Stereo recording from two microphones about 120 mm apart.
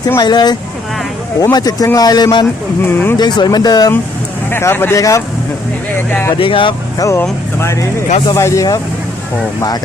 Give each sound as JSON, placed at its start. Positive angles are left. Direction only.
{"t": 0.2, "sound": "speech", "side_deg": 35}
{"t": 1.5, "sound": "speech", "side_deg": 30}
{"t": 2.8, "sound": "speech", "side_deg": 20}
{"t": 3.2, "sound": "speech", "side_deg": 35}
{"t": 4.5, "sound": "speech", "side_deg": 20}
{"t": 6.4, "sound": "speech", "side_deg": 45}
{"t": 7.0, "sound": "speech", "side_deg": 25}